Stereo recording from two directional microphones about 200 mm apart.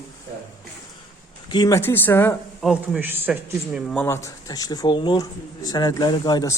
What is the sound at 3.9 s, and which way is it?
Speech, 10° left (ahead or behind).